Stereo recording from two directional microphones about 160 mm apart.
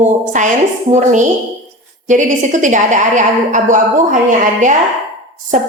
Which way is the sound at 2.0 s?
50° right (ahead or behind).